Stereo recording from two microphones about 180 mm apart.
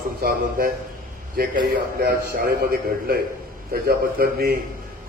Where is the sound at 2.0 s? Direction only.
55° right (ahead or behind).